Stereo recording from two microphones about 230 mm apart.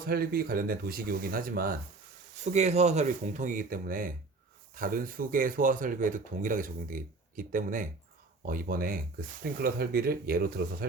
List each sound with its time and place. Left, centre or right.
0.0 s speech: right